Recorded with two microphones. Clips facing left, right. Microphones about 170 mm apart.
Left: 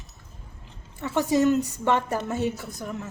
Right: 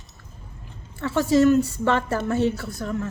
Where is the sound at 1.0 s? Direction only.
20° left (ahead or behind).